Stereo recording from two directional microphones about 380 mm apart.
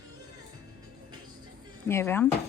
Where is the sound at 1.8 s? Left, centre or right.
Centre.